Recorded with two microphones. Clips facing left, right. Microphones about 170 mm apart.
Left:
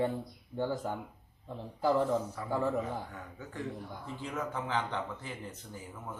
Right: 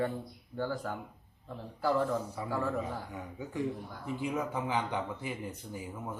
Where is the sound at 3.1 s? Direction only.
10° right (ahead or behind).